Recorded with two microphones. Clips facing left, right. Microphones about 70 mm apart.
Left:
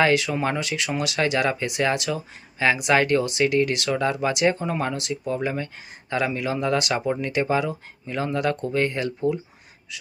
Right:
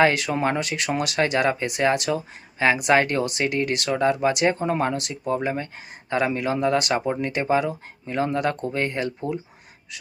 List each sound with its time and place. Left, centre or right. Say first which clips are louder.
0.0 s speech: right 1 dB; right